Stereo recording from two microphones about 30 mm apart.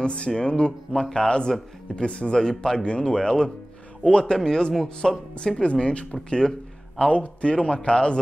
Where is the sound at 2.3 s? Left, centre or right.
Left.